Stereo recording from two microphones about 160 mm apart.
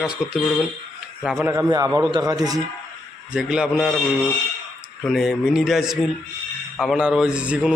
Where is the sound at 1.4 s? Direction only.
20° right (ahead or behind).